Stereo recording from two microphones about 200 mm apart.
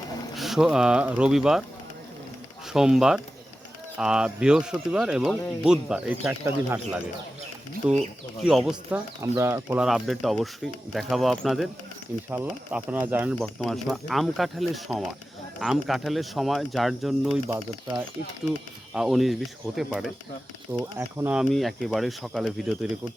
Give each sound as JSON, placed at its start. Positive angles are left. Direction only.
{"t": 0.3, "sound": "speech", "side_deg": 0}
{"t": 2.7, "sound": "speech", "side_deg": -5}
{"t": 7.8, "sound": "speech", "side_deg": -5}
{"t": 8.9, "sound": "speech", "side_deg": -15}
{"t": 18.9, "sound": "speech", "side_deg": 0}